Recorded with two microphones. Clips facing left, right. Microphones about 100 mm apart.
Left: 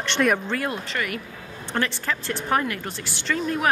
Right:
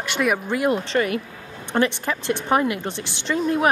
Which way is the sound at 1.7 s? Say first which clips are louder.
Right 5 dB; 20° right (ahead or behind).